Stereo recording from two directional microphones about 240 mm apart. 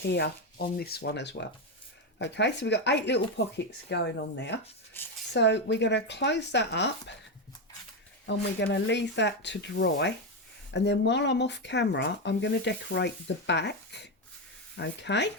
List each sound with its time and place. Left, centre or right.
0.1 s speech: left
4.9 s speech: centre
5.3 s speech: left
8.3 s speech: left